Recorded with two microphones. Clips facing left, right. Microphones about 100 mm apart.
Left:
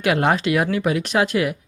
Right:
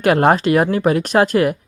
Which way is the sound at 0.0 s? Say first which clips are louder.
Right 5 dB; 45° right (ahead or behind).